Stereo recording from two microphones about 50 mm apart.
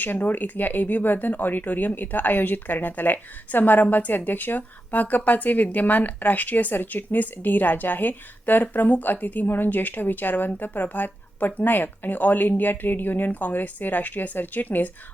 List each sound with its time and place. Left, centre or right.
0.0 s speech: left